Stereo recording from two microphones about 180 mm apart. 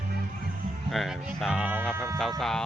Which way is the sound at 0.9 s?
Centre (ahead or behind).